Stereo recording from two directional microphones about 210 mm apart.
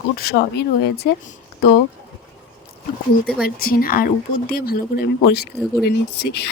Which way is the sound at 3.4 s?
45° left (ahead or behind).